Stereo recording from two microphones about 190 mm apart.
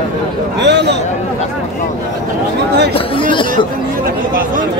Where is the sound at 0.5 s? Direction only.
65° right (ahead or behind).